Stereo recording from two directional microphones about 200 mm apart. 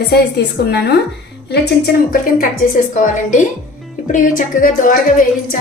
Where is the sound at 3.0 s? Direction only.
40° left (ahead or behind).